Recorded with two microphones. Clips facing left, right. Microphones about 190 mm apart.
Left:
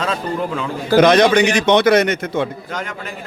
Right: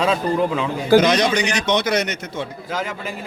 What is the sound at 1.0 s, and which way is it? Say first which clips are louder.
A man's voice: left 6 dB; 55° left (ahead or behind).